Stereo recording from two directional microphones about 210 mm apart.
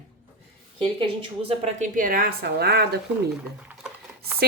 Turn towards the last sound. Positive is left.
turn(degrees=-5)  # may be behind; listen again after turning